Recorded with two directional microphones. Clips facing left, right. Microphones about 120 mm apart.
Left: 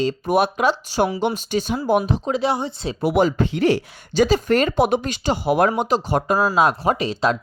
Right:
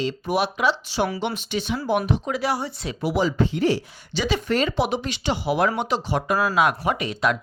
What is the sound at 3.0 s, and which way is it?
Speech, 55° left (ahead or behind).